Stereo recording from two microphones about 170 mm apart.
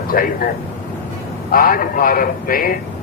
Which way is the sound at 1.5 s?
55° left (ahead or behind).